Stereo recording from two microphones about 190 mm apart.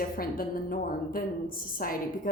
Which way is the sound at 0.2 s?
50° left (ahead or behind).